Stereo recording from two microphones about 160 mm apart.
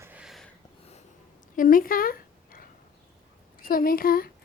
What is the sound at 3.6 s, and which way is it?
Speech, 60° left (ahead or behind).